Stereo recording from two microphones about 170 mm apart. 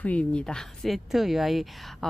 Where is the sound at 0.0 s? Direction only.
5° left (ahead or behind).